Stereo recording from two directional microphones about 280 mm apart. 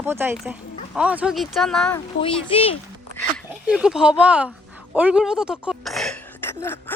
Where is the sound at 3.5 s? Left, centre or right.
Centre.